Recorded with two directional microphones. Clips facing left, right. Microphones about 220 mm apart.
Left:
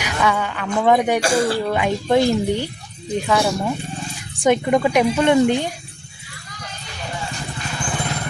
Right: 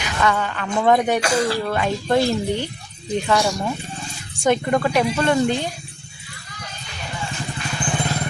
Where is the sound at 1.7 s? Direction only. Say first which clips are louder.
Left 2 dB; 15° left (ahead or behind).